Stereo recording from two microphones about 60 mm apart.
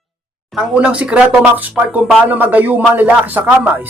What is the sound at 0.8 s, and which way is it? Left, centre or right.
Speech, centre.